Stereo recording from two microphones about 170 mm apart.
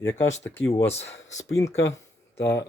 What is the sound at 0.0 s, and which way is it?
Speech, 15° left (ahead or behind).